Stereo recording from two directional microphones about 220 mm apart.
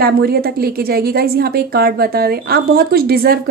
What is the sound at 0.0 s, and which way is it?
A woman's voice, 45° right (ahead or behind).